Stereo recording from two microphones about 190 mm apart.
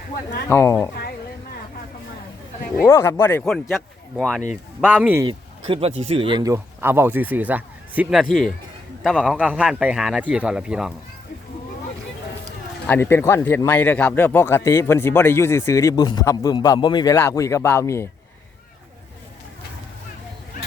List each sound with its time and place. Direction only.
0.4 s speech: 15° left (ahead or behind)
2.8 s a man's voice: 15° left (ahead or behind)
4.8 s speech: 10° right (ahead or behind)
5.2 s a man's voice: 25° right (ahead or behind); by 10.9 s 5° right (ahead or behind)
12.9 s speech: 15° left (ahead or behind)